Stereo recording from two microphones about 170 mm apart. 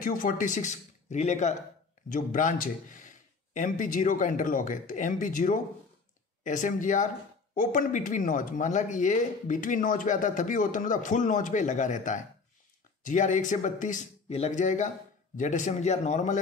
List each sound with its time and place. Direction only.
0.0 s a man's voice: 55° left (ahead or behind)